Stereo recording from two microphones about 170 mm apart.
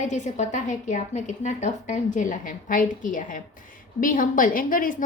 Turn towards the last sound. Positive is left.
turn(degrees=55)  # may be behind; listen again after turning